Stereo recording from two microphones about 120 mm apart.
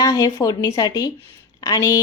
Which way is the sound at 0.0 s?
30° left (ahead or behind).